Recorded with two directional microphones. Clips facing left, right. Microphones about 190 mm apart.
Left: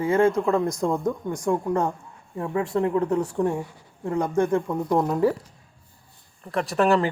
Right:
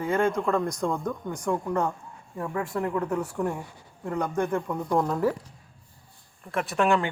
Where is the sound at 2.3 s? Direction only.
25° left (ahead or behind).